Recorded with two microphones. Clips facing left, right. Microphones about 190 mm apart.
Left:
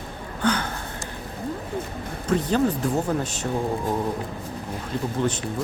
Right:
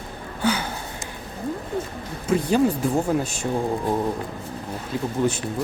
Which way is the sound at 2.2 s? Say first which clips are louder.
Right 2 dB; 10° right (ahead or behind).